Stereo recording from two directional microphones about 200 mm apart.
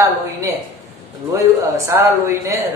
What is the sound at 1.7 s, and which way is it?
Speech, 15° right (ahead or behind).